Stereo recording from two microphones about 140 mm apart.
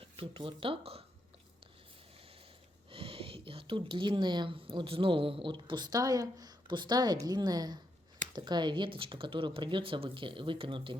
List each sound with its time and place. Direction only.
0.0 s speech: 40° right (ahead or behind)
2.9 s speech: 40° right (ahead or behind)